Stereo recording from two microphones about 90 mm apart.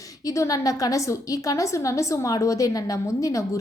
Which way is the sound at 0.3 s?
40° left (ahead or behind).